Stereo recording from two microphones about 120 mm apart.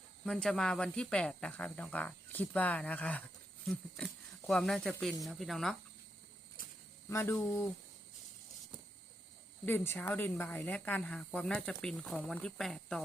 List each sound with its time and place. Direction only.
0.3 s speech: 5° left (ahead or behind)
7.1 s speech: 20° left (ahead or behind)
9.6 s speech: 15° left (ahead or behind)